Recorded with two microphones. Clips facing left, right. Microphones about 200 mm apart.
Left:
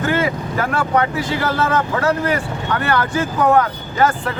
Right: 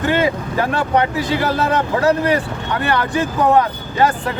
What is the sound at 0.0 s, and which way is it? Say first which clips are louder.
Vehicle: right 2 dB; 25° right (ahead or behind).